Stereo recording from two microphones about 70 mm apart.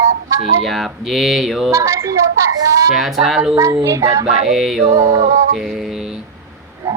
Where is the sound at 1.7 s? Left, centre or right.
Right.